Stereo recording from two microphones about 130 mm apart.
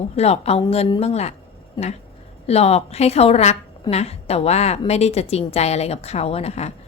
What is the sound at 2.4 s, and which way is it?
A woman's voice, 55° left (ahead or behind).